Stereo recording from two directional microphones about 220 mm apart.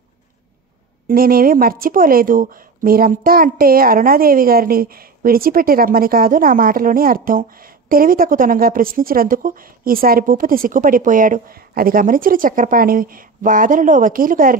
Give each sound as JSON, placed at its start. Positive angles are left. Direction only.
{"t": 1.0, "sound": "speech", "side_deg": -40}